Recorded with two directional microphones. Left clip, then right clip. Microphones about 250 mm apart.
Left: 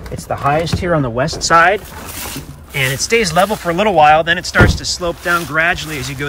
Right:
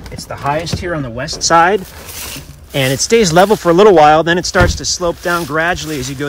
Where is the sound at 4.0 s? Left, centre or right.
Right.